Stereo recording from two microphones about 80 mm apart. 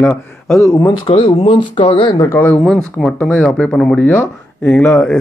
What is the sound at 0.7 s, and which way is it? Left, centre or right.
Speech, left.